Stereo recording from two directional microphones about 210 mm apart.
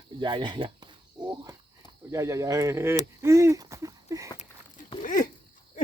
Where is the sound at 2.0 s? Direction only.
15° right (ahead or behind).